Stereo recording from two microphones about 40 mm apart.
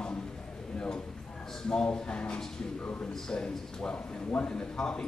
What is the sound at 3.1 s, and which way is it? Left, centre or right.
Speech, centre.